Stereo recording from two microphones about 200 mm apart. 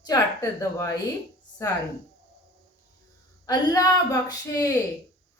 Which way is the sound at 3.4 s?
15° left (ahead or behind).